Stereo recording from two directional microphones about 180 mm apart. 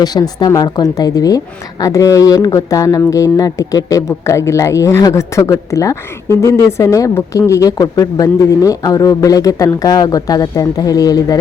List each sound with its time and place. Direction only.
0.0 s speech: 25° left (ahead or behind)